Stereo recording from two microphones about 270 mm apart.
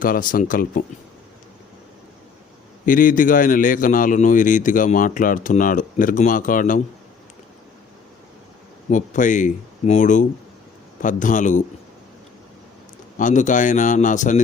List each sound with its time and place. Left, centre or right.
0.0 s speech: left
2.8 s a man's voice: left
8.9 s a man's voice: left
13.1 s a man's voice: left